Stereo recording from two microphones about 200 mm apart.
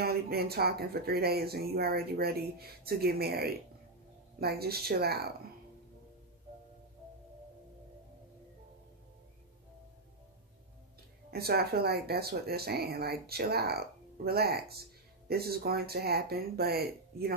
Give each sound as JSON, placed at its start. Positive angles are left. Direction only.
{"t": 0.0, "sound": "speech", "side_deg": -50}
{"t": 11.2, "sound": "speech", "side_deg": -50}